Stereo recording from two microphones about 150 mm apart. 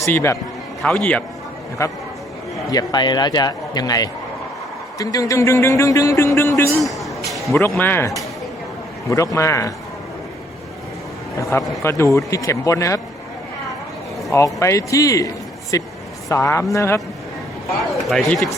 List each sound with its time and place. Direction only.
0.0 s speech: 15° left (ahead or behind)
0.8 s speech: 5° left (ahead or behind)
1.8 s speech: 20° left (ahead or behind)
6.7 s a sound: centre (ahead or behind)
7.8 s speech: 15° left (ahead or behind)
11.8 s speech: 20° left (ahead or behind)
14.3 s speech: 20° left (ahead or behind)
18.1 s speech: centre (ahead or behind)